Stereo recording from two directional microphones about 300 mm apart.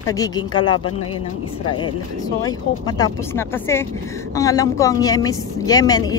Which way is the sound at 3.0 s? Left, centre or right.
Centre.